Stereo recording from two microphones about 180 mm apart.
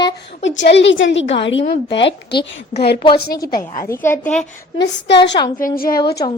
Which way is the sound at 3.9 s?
10° left (ahead or behind).